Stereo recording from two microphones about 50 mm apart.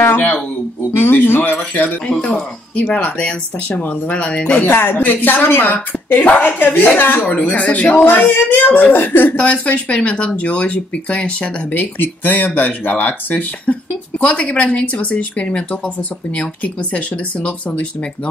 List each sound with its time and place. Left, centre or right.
0.1 s a sound: left
2.1 s a woman's voice: centre; by 7.2 s left
7.2 s a woman's voice: left
9.4 s a woman's voice: left